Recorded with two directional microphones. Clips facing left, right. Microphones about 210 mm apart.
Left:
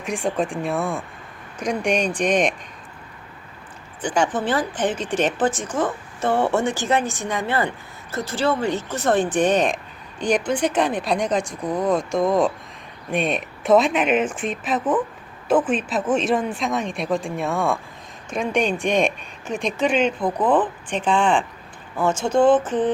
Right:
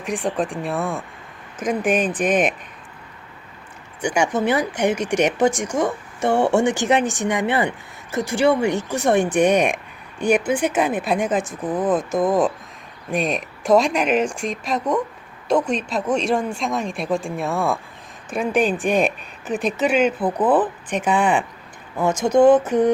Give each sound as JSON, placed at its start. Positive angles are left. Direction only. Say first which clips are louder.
{"t": 0.0, "sound": "speech", "louder": "even", "side_deg": 0}
{"t": 4.0, "sound": "speech", "louder": "right 2 dB", "side_deg": -10}